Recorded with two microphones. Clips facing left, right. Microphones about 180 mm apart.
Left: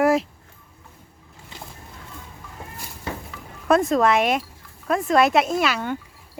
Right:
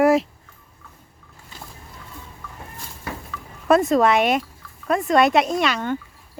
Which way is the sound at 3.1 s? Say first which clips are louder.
Left 1 dB; 20° left (ahead or behind).